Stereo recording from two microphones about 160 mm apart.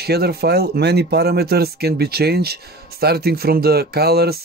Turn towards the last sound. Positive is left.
turn(degrees=-80)